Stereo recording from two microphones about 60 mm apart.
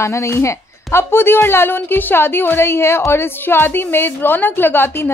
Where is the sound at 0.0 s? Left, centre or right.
Left.